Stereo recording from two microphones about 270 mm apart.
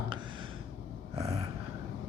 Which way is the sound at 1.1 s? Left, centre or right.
Centre.